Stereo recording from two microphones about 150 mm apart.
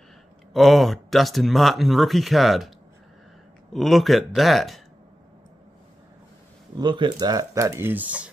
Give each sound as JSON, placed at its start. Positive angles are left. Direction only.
{"t": 0.5, "sound": "speech", "side_deg": 0}
{"t": 3.7, "sound": "speech", "side_deg": 0}
{"t": 6.8, "sound": "speech", "side_deg": -30}